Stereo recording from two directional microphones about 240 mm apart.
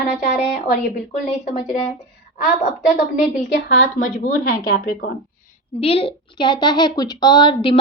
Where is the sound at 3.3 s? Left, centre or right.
Left.